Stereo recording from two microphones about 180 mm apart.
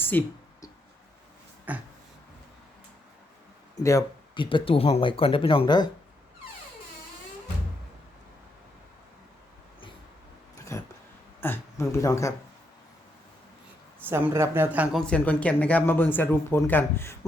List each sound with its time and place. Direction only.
0.0 s a sound: 10° left (ahead or behind)
1.7 s speech: 10° right (ahead or behind)
3.8 s speech: 20° left (ahead or behind)
4.4 s speech: 30° left (ahead or behind)
10.7 s a sound: 15° left (ahead or behind)
14.0 s speech: 10° right (ahead or behind)
15.0 s speech: 5° left (ahead or behind)